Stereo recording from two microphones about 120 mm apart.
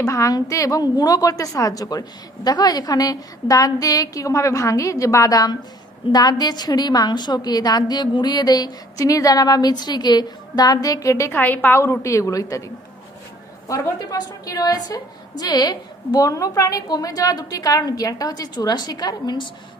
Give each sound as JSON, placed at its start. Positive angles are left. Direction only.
{"t": 0.0, "sound": "a woman's voice", "side_deg": 25}
{"t": 11.3, "sound": "a woman's voice", "side_deg": 15}